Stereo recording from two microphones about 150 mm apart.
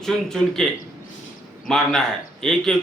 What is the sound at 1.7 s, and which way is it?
A man's voice, 5° left (ahead or behind).